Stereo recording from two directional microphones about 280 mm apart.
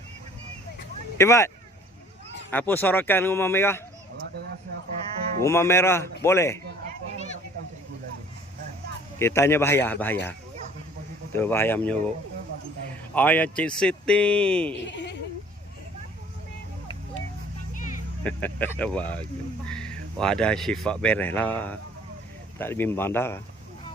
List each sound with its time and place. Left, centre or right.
1.2 s speech: centre
2.5 s speech: centre
5.4 s speech: centre
9.1 s speech: centre
11.3 s speech: centre
13.1 s a man's voice: centre
14.8 s speech: left
18.2 s a man's voice: centre